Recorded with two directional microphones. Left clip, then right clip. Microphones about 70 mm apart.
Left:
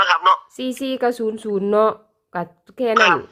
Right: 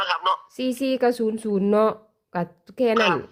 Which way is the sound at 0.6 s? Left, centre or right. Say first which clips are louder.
Left 1 dB; right.